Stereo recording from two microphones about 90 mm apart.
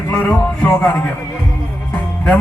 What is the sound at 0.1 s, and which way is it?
Music, 15° left (ahead or behind).